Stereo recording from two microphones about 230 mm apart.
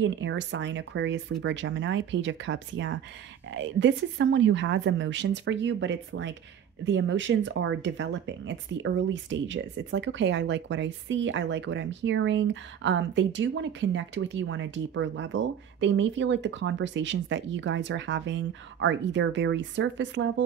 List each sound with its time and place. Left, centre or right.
0.0 s speech: right